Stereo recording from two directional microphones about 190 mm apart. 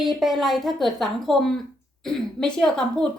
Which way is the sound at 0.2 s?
Centre (ahead or behind).